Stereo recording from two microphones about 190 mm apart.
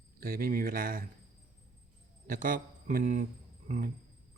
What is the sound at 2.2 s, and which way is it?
Speech, 45° right (ahead or behind).